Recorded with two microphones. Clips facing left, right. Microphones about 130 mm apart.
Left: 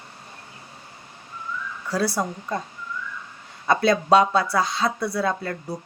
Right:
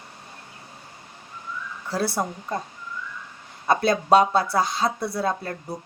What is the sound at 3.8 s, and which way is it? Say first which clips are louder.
A woman's voice: left 1 dB; 50° right (ahead or behind).